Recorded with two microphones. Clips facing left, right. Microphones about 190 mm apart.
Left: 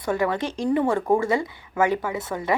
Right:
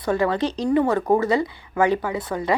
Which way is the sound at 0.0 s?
20° left (ahead or behind).